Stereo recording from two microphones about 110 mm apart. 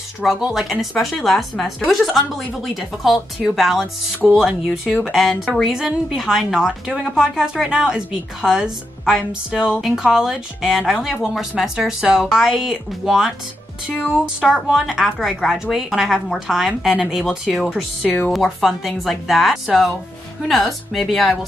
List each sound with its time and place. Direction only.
0.2 s speech: 5° right (ahead or behind)
18.0 s a woman's voice: 15° left (ahead or behind)
18.3 s speech: centre (ahead or behind)